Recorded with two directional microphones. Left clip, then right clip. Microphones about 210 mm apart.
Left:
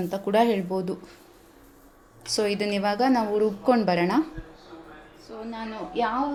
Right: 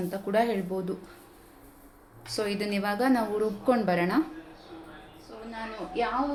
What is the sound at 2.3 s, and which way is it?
A woman's voice, 20° left (ahead or behind).